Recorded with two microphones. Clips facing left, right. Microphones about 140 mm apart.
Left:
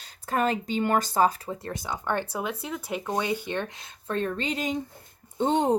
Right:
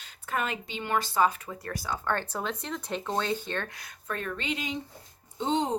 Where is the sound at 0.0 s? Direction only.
35° left (ahead or behind).